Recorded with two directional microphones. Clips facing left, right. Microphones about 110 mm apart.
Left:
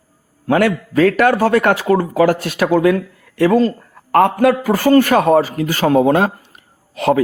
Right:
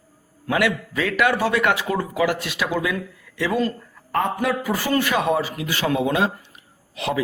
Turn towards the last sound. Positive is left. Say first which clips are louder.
# left 10 dB
turn(degrees=50)  # may be behind; listen again after turning